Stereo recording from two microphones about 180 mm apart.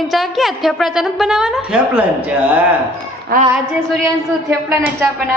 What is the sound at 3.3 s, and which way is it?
Female singing, 55° right (ahead or behind).